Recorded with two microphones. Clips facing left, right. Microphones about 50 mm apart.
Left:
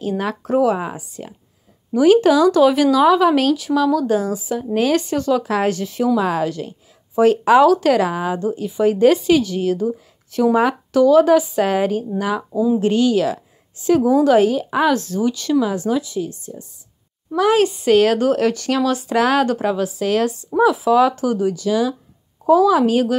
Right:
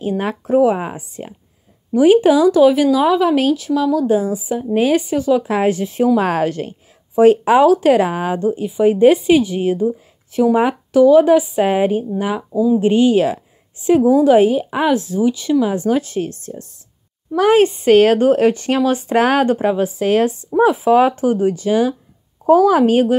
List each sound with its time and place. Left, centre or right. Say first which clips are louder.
0.5 s speech: right 3 dB; centre
0.9 s a woman's voice: right 2 dB; right
2.0 s speech: right 2 dB; centre
4.2 s speech: right 2 dB; centre
5.4 s speech: right 2 dB; right
6.1 s a woman's voice: right 3 dB; right
7.2 s a woman's voice: right 2 dB; right
15.6 s a woman's voice: right 3 dB; right
16.0 s a woman's voice: right 3 dB; right
17.4 s a woman's voice: right 3 dB; right